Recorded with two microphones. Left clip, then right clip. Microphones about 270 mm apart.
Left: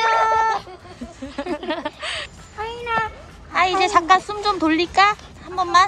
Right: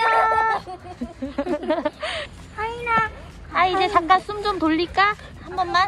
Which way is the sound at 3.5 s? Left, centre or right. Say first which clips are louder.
Left 2 dB; centre.